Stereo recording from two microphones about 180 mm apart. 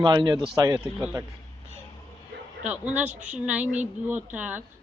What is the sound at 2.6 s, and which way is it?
A man's voice, 10° right (ahead or behind).